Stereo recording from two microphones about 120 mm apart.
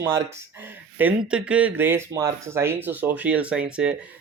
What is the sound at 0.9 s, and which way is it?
Speech, 10° right (ahead or behind).